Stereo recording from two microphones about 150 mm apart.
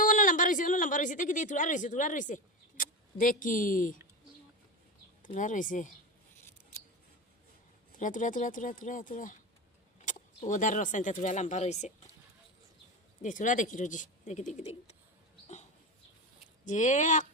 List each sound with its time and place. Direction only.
0.0 s a woman's voice: 60° left (ahead or behind)
5.2 s speech: 60° left (ahead or behind)
7.9 s speech: 60° left (ahead or behind)
10.1 s vehicle: 55° left (ahead or behind)
10.5 s speech: 55° left (ahead or behind)
13.2 s speech: 60° left (ahead or behind)
16.6 s speech: 55° left (ahead or behind)